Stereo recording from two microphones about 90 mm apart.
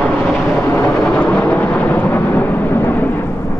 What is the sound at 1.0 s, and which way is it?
Thunder, 10° left (ahead or behind).